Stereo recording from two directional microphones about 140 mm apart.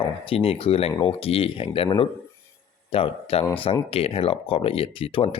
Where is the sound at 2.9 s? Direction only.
40° left (ahead or behind).